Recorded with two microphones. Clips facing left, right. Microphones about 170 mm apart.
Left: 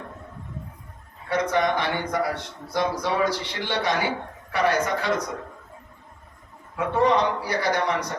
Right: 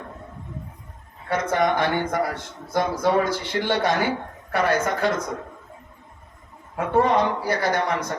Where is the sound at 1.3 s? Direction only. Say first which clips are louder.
Right 1 dB; 50° right (ahead or behind).